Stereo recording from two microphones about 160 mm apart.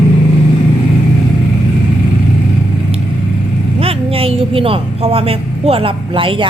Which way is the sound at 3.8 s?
35° right (ahead or behind).